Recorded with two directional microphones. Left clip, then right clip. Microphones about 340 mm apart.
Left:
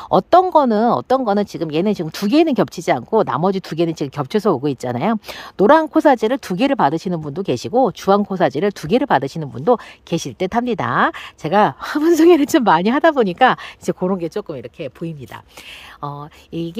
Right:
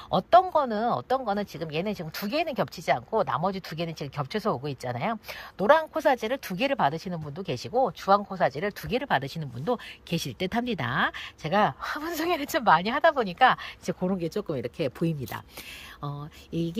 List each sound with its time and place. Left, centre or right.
0.1 s speech: centre